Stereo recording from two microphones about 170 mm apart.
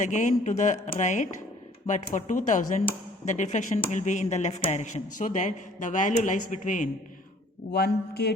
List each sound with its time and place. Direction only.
0.0 s speech: 45° left (ahead or behind)
7.7 s speech: 70° left (ahead or behind)